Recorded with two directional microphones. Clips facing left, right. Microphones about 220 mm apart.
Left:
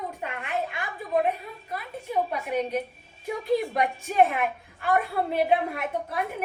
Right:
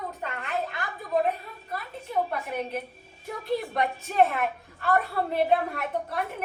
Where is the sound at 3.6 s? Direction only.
15° left (ahead or behind).